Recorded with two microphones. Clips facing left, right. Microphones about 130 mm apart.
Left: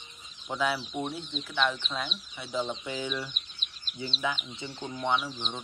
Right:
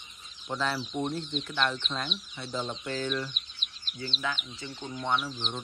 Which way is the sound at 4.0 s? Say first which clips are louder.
Left 2 dB; 20° left (ahead or behind).